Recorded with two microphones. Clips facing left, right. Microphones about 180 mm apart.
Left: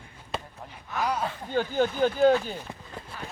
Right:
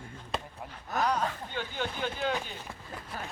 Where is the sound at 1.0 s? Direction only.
10° left (ahead or behind).